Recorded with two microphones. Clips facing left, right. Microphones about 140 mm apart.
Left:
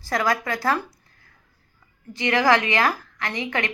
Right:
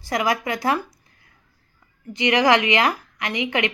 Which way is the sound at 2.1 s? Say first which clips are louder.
Right 2 dB; 15° right (ahead or behind).